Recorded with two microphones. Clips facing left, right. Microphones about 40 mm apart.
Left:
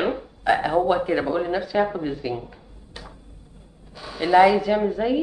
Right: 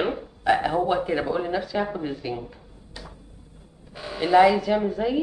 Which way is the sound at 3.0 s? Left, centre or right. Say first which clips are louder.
Left 1 dB; left.